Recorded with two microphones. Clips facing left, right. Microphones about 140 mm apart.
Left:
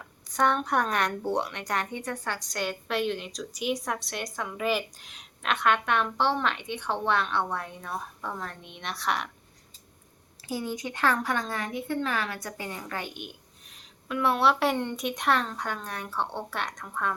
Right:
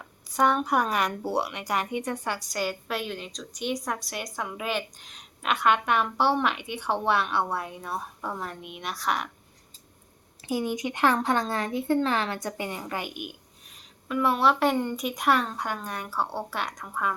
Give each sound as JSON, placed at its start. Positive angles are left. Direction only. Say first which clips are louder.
{"t": 0.3, "sound": "speech", "louder": "right 2 dB", "side_deg": -5}
{"t": 10.5, "sound": "a woman's voice", "louder": "right 4 dB", "side_deg": -15}